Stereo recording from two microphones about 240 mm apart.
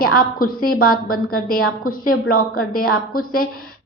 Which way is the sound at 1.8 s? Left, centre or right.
Left.